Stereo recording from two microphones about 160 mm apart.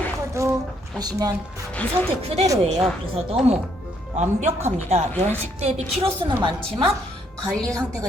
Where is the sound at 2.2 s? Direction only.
40° right (ahead or behind).